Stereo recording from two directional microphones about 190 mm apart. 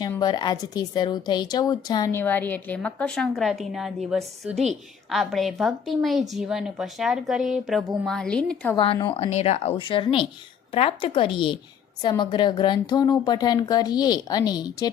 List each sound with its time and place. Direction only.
0.2 s a woman's voice: 20° left (ahead or behind)
2.2 s a woman's voice: 10° left (ahead or behind)
8.7 s a woman's voice: 25° left (ahead or behind)